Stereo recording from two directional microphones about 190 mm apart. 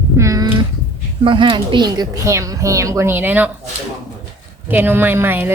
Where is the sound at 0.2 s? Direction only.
20° right (ahead or behind).